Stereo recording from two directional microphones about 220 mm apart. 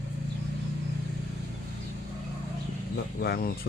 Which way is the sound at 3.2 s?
45° left (ahead or behind).